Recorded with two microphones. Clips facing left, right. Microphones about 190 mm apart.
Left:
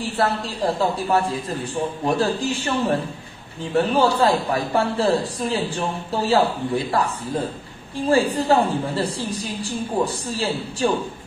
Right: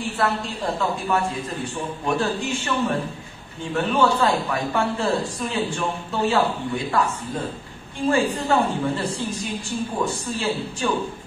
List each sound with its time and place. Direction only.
0.2 s a man's voice: 35° left (ahead or behind)
8.1 s a man's voice: 35° left (ahead or behind)